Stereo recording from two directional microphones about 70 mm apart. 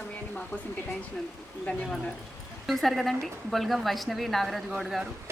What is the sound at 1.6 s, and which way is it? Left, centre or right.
Speech, centre.